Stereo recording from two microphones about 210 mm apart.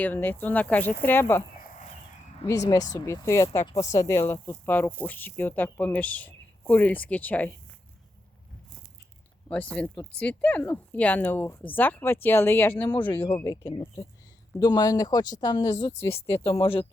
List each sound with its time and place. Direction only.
0.0 s speech: 10° left (ahead or behind)
1.5 s a sound: 40° left (ahead or behind)
2.5 s speech: 15° left (ahead or behind)
9.5 s speech: 5° left (ahead or behind)
13.2 s speech: 20° left (ahead or behind)
16.2 s speech: 25° left (ahead or behind)